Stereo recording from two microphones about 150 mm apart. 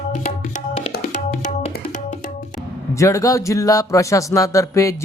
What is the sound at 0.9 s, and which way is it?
Music, 80° left.